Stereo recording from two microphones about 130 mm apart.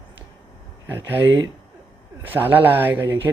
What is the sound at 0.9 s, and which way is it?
Speech, 15° right (ahead or behind).